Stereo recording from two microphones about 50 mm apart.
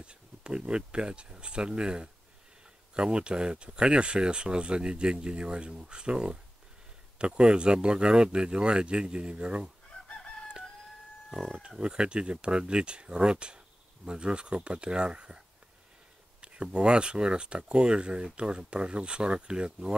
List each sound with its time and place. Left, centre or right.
0.0 s speech: right
10.0 s chicken: centre
11.2 s speech: centre
11.8 s speech: centre